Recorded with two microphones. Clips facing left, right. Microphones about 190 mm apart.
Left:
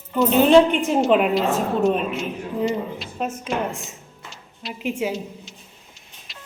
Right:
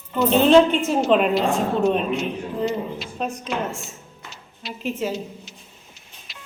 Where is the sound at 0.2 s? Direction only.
10° left (ahead or behind).